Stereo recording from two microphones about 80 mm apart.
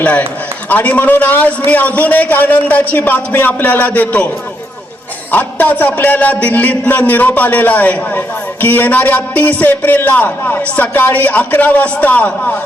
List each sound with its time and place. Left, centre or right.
0.0 s a man's voice: centre
5.3 s a woman's voice: left